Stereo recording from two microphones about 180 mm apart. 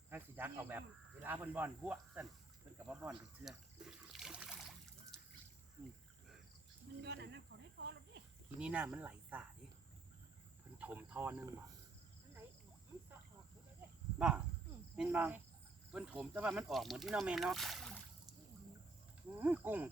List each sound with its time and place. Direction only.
0.1 s cricket: 10° right (ahead or behind)
1.2 s speech: 10° right (ahead or behind)
7.0 s snake: 70° right (ahead or behind)
8.5 s speech: 5° right (ahead or behind)
10.8 s speech: 10° right (ahead or behind)
14.2 s speech: 5° right (ahead or behind)
19.4 s speech: 10° right (ahead or behind)